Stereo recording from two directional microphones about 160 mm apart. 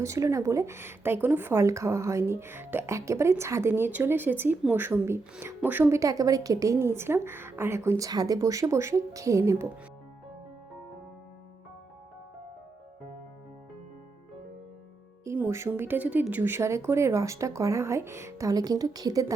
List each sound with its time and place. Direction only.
0.0 s a woman's voice: 20° right (ahead or behind)
15.2 s speech: 15° right (ahead or behind)